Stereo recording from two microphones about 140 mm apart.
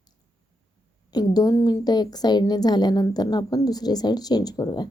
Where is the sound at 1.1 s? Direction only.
30° left (ahead or behind).